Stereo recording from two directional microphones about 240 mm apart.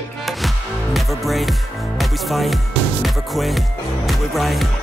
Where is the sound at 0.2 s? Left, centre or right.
Centre.